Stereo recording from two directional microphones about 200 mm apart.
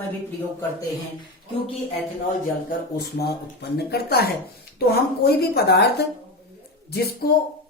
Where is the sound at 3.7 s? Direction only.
50° left (ahead or behind).